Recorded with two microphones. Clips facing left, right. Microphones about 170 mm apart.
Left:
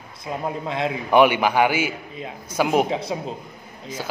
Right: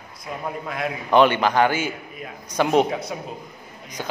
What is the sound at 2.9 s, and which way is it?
Speech, 30° left (ahead or behind).